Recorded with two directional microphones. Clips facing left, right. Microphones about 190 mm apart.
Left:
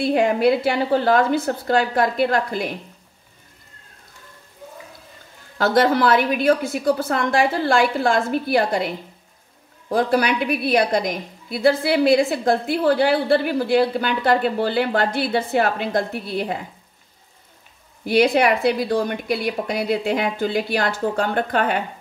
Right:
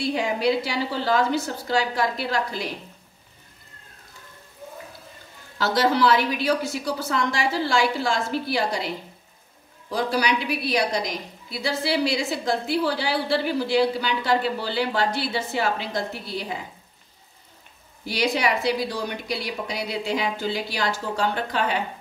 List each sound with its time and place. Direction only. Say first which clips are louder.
0.0 s a woman's voice: left 6 dB; 55° left (ahead or behind)
5.6 s a woman's voice: left 4 dB; 55° left (ahead or behind)
18.0 s a woman's voice: left 7 dB; 55° left (ahead or behind)